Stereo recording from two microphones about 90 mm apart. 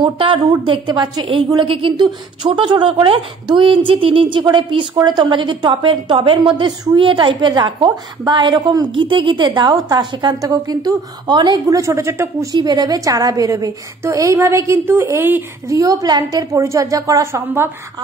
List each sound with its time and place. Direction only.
0.0 s a woman's voice: 70° right (ahead or behind); by 11.6 s 55° right (ahead or behind)
11.7 s a woman's voice: 35° right (ahead or behind)
12.5 s a woman's voice: 50° right (ahead or behind); by 17.6 s 30° right (ahead or behind)